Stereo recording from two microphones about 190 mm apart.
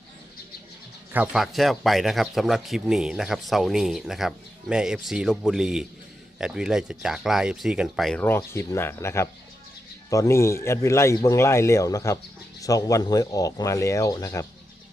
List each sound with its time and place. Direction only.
1.1 s speech: 5° right (ahead or behind); by 14.4 s 15° left (ahead or behind)